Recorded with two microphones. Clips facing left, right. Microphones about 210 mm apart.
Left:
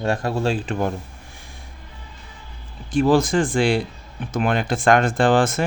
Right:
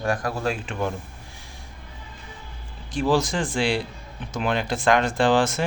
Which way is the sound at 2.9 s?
55° left (ahead or behind).